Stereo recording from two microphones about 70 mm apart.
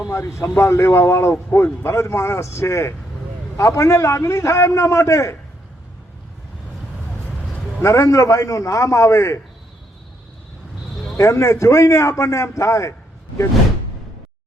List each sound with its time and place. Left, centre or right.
0.0 s a sound: left
0.4 s a man's voice: left
7.8 s a man's voice: left
11.2 s a man's voice: left